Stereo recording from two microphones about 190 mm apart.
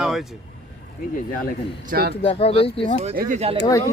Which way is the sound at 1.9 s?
55° right (ahead or behind).